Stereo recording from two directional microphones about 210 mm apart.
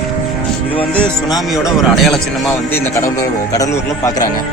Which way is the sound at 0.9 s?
5° left (ahead or behind).